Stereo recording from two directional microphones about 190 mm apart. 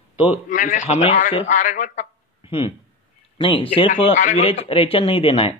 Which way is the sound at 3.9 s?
40° left (ahead or behind).